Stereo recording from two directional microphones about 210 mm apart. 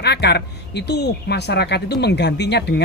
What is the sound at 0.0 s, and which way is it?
A woman's voice, 50° left (ahead or behind).